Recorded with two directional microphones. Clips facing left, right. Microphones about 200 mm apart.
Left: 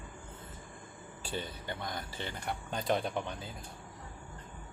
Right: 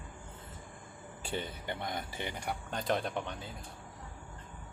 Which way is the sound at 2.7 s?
Centre (ahead or behind).